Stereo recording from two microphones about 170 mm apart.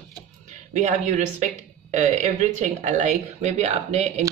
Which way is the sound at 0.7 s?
45° right (ahead or behind).